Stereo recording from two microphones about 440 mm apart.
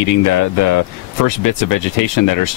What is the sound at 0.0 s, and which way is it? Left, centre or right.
Speech, left.